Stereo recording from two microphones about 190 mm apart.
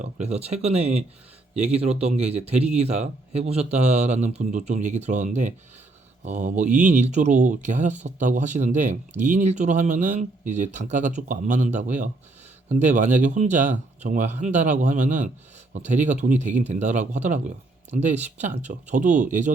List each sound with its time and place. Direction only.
0.0 s speech: 35° right (ahead or behind)